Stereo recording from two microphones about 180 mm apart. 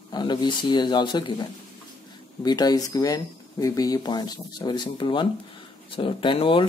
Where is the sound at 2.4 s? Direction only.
20° left (ahead or behind).